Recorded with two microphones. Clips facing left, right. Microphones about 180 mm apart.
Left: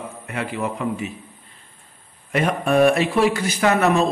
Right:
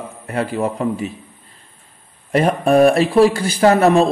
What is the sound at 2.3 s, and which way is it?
Speech, 35° right (ahead or behind).